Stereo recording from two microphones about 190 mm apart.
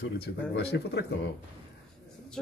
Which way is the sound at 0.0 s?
60° left (ahead or behind).